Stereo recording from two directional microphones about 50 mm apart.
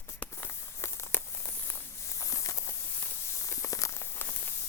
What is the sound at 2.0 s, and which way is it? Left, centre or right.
Walk, left.